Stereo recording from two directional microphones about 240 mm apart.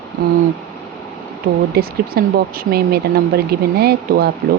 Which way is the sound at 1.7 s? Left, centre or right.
Right.